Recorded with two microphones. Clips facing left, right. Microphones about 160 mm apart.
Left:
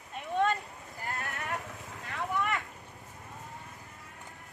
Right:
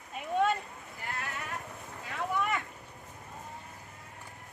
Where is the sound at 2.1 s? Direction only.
Centre (ahead or behind).